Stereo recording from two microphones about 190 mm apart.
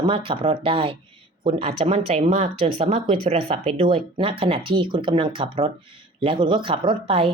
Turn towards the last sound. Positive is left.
turn(degrees=-30)  # may be behind; listen again after turning